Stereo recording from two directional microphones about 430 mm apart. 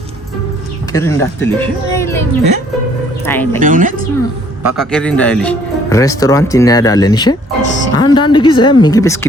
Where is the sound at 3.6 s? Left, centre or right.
Centre.